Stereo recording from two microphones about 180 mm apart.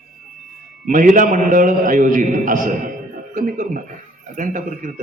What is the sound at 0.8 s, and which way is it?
A man's voice, 45° right (ahead or behind).